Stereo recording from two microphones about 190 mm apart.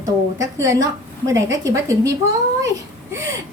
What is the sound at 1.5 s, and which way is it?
Speech, 15° right (ahead or behind).